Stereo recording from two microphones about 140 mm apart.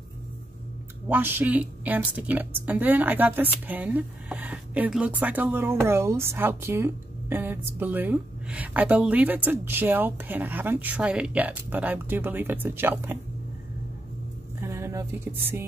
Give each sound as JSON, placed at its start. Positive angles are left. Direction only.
{"t": 1.0, "sound": "a woman's voice", "side_deg": -15}
{"t": 14.6, "sound": "music", "side_deg": -20}